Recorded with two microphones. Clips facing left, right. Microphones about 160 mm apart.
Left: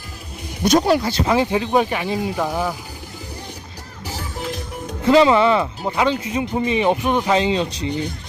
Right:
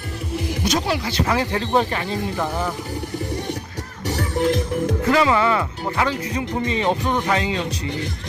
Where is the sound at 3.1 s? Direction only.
80° right.